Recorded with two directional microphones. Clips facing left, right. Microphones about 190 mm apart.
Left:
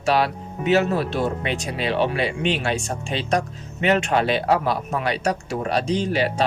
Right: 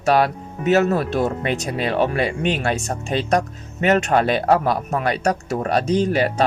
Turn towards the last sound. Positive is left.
turn(degrees=-45)  # may be behind; listen again after turning